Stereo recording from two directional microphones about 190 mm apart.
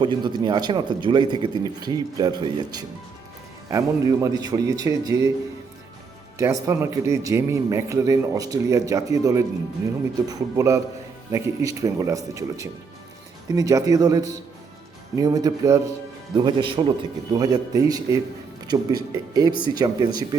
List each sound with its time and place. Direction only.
0.0 s a man's voice: 25° right (ahead or behind)
6.4 s a man's voice: 15° right (ahead or behind)